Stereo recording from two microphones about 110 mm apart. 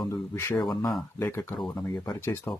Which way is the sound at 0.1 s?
20° left (ahead or behind).